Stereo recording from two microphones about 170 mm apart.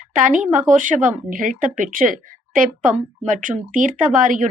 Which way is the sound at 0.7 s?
45° right (ahead or behind).